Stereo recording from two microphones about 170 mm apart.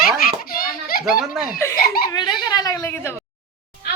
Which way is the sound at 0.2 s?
60° left (ahead or behind).